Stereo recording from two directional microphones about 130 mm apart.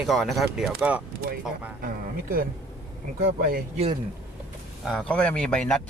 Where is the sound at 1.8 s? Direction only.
90° right.